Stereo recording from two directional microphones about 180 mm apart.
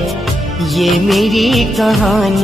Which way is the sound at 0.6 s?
Centre (ahead or behind).